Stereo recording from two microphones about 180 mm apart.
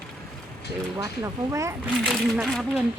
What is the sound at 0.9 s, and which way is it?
Speech, 20° right (ahead or behind).